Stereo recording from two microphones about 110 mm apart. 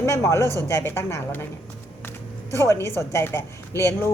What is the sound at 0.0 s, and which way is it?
A woman's voice, 25° left (ahead or behind).